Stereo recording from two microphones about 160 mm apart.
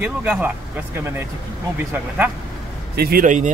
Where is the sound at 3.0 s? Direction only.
65° right (ahead or behind).